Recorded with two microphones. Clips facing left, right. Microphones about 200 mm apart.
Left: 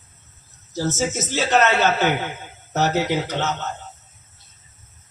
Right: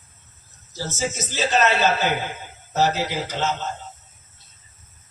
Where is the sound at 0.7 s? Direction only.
70° left (ahead or behind).